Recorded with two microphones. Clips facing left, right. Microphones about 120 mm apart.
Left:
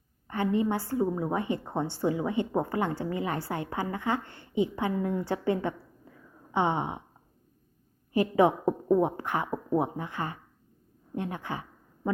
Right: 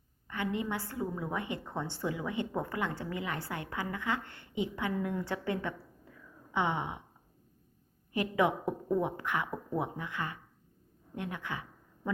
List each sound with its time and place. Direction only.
0.3 s a woman's voice: 35° left (ahead or behind)
8.1 s a woman's voice: 30° left (ahead or behind)